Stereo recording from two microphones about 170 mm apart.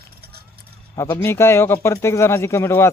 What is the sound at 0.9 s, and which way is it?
Speech, 15° left (ahead or behind).